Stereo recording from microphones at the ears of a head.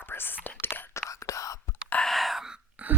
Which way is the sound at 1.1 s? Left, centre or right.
Left.